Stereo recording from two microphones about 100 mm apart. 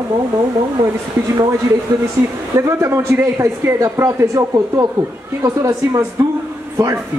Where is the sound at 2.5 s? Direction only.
25° right (ahead or behind).